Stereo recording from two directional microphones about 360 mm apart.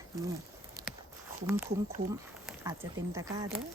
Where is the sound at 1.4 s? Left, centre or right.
Centre.